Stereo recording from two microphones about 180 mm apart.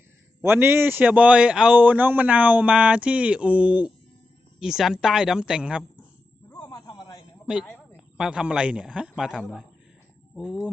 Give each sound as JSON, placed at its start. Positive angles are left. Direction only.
{"t": 0.4, "sound": "a man's voice", "side_deg": -10}
{"t": 6.7, "sound": "a sound", "side_deg": 25}
{"t": 7.4, "sound": "a man's voice", "side_deg": -5}